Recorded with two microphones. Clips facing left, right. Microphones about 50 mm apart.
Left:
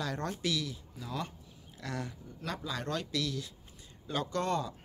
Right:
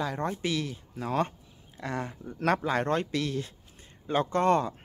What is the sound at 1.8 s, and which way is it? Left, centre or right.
Speech, right.